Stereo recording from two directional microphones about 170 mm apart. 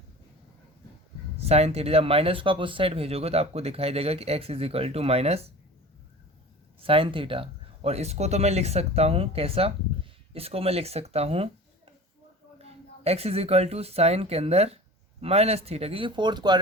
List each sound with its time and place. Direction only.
1.4 s speech: 35° right (ahead or behind)
6.8 s speech: 30° right (ahead or behind)
12.6 s a woman's voice: 35° right (ahead or behind)